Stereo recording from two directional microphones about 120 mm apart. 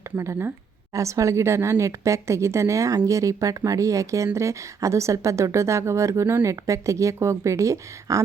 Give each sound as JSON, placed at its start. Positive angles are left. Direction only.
{"t": 0.2, "sound": "a woman's voice", "side_deg": -20}